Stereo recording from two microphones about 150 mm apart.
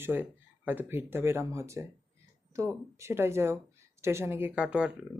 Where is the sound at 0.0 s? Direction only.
15° right (ahead or behind).